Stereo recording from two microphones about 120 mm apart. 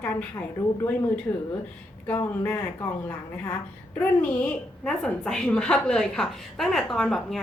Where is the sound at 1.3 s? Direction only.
25° left (ahead or behind).